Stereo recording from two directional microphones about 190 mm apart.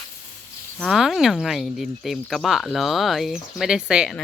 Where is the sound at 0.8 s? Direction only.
Centre (ahead or behind).